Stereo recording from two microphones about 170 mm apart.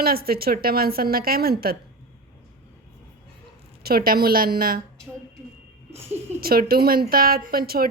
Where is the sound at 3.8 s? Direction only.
60° right (ahead or behind).